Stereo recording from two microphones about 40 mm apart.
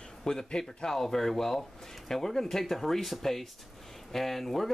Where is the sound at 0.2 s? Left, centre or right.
Centre.